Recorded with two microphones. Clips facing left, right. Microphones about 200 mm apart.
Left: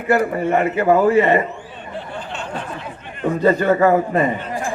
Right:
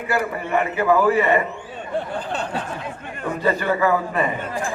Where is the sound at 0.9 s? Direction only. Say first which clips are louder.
Left 3 dB; 25° left (ahead or behind).